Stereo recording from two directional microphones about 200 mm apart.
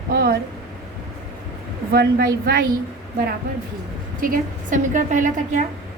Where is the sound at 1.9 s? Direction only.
50° right (ahead or behind).